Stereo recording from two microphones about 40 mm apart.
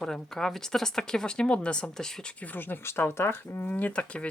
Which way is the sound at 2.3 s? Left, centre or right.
Left.